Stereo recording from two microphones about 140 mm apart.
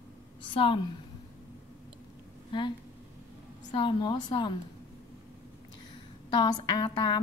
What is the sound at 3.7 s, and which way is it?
Speech, 35° left (ahead or behind).